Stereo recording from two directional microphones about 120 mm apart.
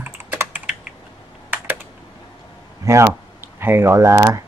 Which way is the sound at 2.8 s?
25° right (ahead or behind).